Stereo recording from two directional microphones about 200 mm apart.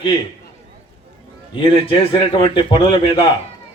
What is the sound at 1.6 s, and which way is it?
A man's voice, 25° left (ahead or behind).